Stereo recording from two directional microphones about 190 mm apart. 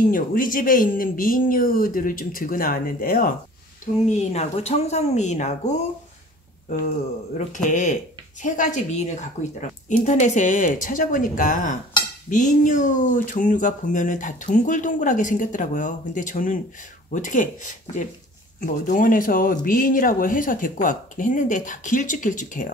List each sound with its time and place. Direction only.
0.1 s speech: 45° left (ahead or behind)
7.3 s speech: 40° left (ahead or behind)